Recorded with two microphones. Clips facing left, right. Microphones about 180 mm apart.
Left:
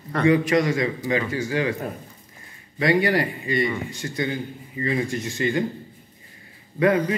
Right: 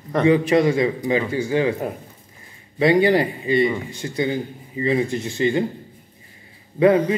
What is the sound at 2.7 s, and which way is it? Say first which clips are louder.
Speech: right 4 dB; 25° right (ahead or behind).